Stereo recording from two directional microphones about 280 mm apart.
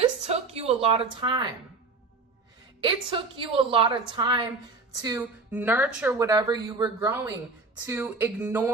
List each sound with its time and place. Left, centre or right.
0.3 s a woman's voice: right
2.8 s a woman's voice: centre